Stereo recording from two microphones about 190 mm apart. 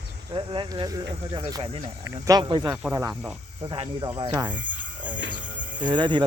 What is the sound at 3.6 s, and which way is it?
Speech, 25° right (ahead or behind).